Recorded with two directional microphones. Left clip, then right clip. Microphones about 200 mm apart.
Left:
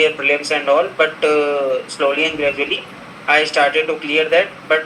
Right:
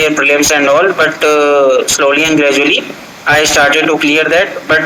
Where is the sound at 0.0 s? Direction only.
65° right (ahead or behind).